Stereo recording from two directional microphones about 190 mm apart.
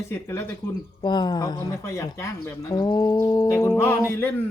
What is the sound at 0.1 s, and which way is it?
Speech, 15° left (ahead or behind).